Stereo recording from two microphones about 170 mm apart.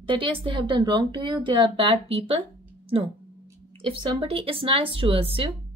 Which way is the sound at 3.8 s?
30° right (ahead or behind).